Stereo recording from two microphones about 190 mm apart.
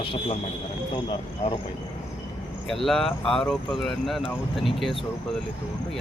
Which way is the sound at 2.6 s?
Centre (ahead or behind).